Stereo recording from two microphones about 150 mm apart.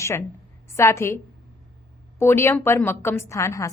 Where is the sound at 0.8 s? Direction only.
20° left (ahead or behind).